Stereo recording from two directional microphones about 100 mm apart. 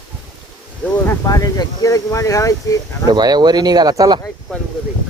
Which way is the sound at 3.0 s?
40° right (ahead or behind).